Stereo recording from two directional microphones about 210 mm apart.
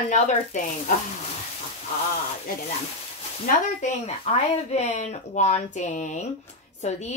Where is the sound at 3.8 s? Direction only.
30° left (ahead or behind).